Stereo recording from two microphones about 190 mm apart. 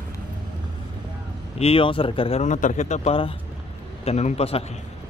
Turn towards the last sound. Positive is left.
turn(degrees=35)  # may be behind; listen again after turning